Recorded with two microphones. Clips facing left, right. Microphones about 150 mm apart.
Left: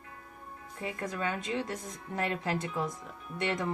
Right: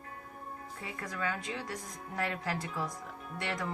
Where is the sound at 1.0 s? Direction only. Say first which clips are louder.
Left 2 dB; 25° left (ahead or behind).